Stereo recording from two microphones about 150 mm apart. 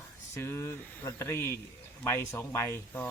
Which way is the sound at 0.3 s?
15° left (ahead or behind).